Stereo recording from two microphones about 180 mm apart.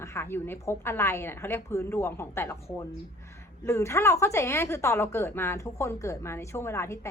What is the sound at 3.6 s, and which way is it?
A woman's voice, 15° left (ahead or behind).